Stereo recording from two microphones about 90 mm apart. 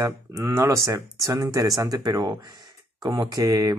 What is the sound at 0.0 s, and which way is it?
Speech, 35° right (ahead or behind).